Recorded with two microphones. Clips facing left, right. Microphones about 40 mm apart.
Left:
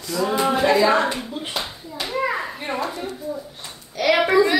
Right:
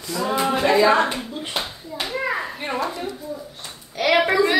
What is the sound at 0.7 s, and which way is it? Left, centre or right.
Speech, right.